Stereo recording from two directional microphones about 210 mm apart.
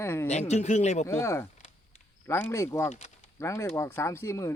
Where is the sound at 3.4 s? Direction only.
10° left (ahead or behind).